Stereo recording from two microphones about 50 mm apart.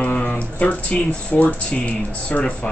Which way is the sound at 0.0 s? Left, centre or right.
Left.